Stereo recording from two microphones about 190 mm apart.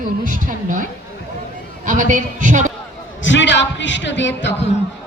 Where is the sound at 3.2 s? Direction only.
70° left (ahead or behind).